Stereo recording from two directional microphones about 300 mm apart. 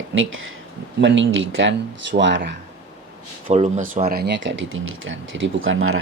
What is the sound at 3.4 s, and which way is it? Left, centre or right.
Speech, right.